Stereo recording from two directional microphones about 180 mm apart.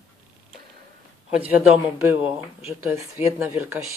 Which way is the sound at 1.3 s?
5° right (ahead or behind).